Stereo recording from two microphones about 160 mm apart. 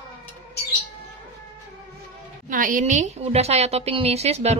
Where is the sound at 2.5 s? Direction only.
60° right (ahead or behind).